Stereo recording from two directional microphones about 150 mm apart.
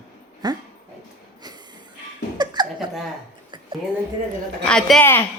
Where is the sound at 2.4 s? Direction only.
30° right (ahead or behind).